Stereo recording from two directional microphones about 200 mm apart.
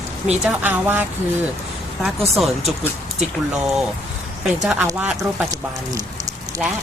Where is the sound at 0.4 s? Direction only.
10° right (ahead or behind).